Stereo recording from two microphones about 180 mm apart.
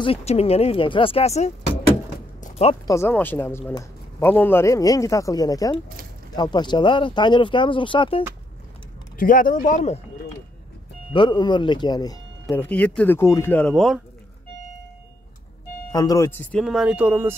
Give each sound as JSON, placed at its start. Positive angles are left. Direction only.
{"t": 0.0, "sound": "speech", "side_deg": 35}
{"t": 2.4, "sound": "a sound", "side_deg": 35}
{"t": 2.9, "sound": "a man's voice", "side_deg": 10}
{"t": 9.2, "sound": "speech", "side_deg": 50}
{"t": 11.1, "sound": "speech", "side_deg": 25}
{"t": 12.4, "sound": "a man's voice", "side_deg": 10}
{"t": 15.9, "sound": "a man's voice", "side_deg": 20}
{"t": 16.6, "sound": "speech", "side_deg": -5}